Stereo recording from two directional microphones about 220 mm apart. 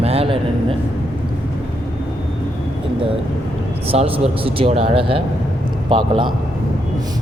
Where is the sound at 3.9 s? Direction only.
25° right (ahead or behind).